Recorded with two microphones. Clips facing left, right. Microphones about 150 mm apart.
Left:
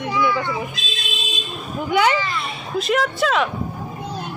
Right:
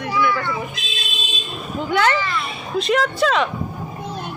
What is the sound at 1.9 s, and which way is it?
Speech, 10° left (ahead or behind).